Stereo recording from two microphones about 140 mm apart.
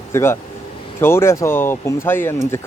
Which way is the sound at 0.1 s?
20° left (ahead or behind).